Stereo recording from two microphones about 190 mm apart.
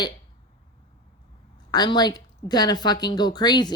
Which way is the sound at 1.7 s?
20° left (ahead or behind).